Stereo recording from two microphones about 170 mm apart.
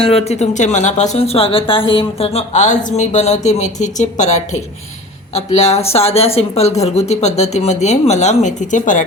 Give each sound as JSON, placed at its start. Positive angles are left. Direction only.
{"t": 0.0, "sound": "speech", "side_deg": 40}